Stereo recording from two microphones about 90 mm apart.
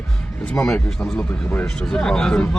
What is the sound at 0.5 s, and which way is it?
Speech, 5° left (ahead or behind).